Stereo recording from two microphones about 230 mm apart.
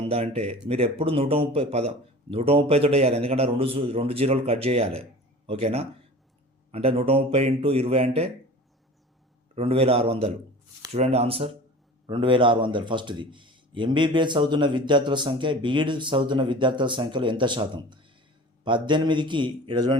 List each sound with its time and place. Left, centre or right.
0.1 s a man's voice: right
9.6 s a man's voice: right